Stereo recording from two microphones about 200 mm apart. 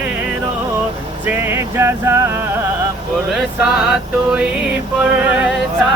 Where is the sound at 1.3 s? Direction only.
10° right (ahead or behind).